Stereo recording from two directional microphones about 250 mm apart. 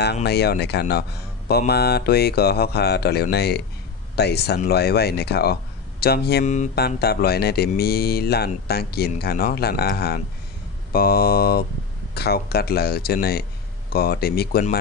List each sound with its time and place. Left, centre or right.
0.0 s speech: left